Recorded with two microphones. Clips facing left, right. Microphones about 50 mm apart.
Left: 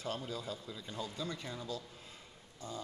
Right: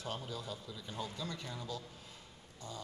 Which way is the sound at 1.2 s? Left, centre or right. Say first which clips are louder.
Left 2 dB; centre.